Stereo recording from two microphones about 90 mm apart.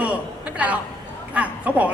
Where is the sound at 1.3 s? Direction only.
15° right (ahead or behind).